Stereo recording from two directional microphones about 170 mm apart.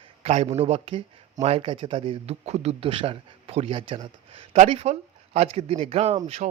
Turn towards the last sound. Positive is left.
turn(degrees=-35)  # may be behind; listen again after turning